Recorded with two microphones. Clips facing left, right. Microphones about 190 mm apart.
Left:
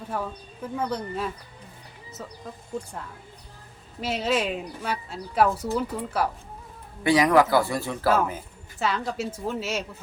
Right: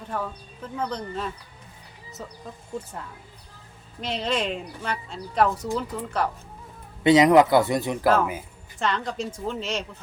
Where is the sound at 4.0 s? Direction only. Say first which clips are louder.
Left 2 dB; 5° left (ahead or behind).